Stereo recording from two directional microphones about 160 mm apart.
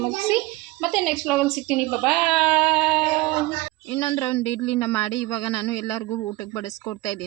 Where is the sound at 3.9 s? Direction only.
15° left (ahead or behind).